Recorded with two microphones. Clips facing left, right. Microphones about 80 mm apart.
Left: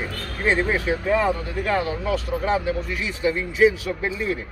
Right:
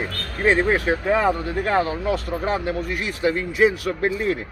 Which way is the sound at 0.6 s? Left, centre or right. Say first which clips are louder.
Right 3 dB; right.